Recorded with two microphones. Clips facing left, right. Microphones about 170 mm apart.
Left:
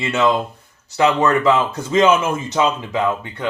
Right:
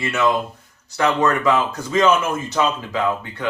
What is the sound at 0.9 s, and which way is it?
Speech, 25° left (ahead or behind).